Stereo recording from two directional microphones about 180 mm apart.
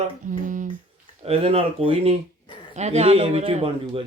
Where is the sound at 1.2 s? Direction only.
35° right (ahead or behind).